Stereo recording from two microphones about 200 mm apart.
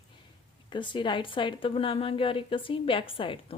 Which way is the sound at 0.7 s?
25° left (ahead or behind).